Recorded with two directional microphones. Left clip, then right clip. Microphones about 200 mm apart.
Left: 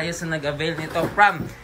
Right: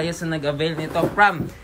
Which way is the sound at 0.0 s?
Centre (ahead or behind).